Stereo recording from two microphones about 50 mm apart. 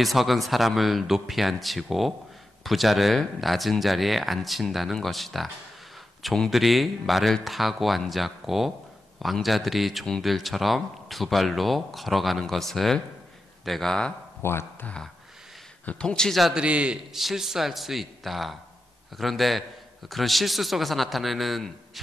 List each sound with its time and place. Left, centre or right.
0.0 s a man's voice: centre
6.5 s a man's voice: centre
14.4 s speech: left
16.0 s speech: centre
16.3 s a man's voice: centre
16.5 s a man's voice: right
17.1 s a man's voice: centre